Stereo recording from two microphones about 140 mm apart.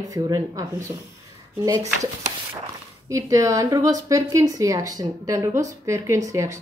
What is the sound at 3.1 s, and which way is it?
A woman's voice, 20° right (ahead or behind).